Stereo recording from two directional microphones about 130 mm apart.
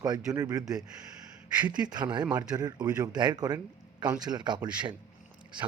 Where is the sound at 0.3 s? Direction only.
25° right (ahead or behind).